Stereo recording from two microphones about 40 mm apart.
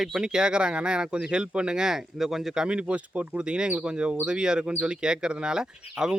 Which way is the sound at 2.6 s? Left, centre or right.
Right.